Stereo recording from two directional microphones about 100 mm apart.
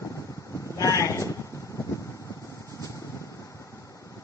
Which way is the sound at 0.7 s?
35° left (ahead or behind).